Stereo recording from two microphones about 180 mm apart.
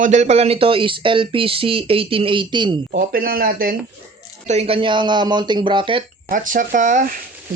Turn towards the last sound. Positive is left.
turn(degrees=-45)  # may be behind; listen again after turning